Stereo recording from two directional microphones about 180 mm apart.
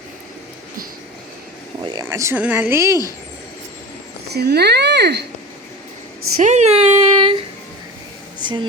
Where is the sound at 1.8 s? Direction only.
25° right (ahead or behind).